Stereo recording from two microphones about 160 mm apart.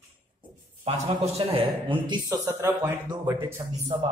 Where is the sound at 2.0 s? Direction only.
25° right (ahead or behind).